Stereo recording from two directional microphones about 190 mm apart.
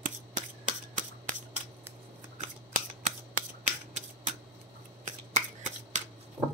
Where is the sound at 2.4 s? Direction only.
40° right (ahead or behind).